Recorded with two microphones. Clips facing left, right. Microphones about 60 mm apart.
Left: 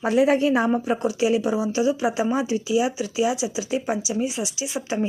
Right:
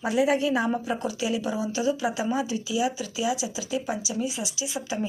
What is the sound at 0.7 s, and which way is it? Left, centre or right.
A woman's voice, left.